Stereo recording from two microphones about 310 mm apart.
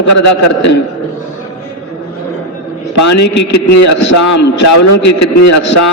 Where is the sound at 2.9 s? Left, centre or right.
Left.